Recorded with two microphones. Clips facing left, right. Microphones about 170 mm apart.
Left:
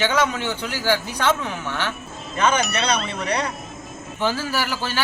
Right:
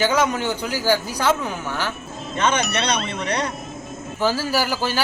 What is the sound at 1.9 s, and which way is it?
Speech, centre (ahead or behind).